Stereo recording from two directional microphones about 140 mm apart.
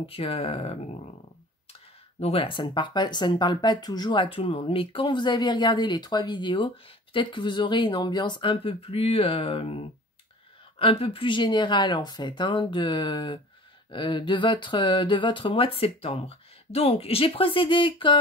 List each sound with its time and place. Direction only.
0.0 s speech: 40° left (ahead or behind)